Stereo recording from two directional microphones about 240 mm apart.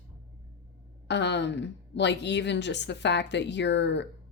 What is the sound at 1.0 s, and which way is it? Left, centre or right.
Speech, left.